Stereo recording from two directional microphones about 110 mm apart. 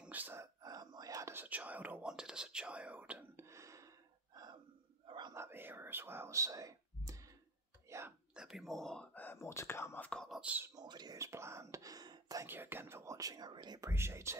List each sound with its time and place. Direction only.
0.0 s whispering: 15° right (ahead or behind)
0.4 s whispering: 35° right (ahead or behind)
1.3 s whispering: 15° right (ahead or behind)
3.3 s gasp: 25° right (ahead or behind)
5.0 s whispering: 45° right (ahead or behind)
5.3 s whispering: 20° right (ahead or behind)
8.4 s speech: 5° right (ahead or behind)
9.2 s speech: 20° left (ahead or behind)
10.4 s speech: 15° right (ahead or behind)
10.8 s speech: 40° right (ahead or behind)
11.1 s speech: 25° right (ahead or behind)
12.4 s speech: 20° right (ahead or behind); by 13.8 s 40° right (ahead or behind)
13.8 s speech: 25° right (ahead or behind)